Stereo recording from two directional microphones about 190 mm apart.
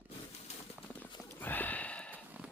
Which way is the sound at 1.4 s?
10° left (ahead or behind).